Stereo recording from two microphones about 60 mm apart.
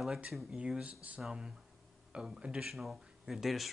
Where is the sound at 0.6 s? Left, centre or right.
Centre.